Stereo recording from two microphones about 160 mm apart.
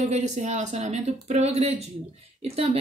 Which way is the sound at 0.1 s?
50° right (ahead or behind).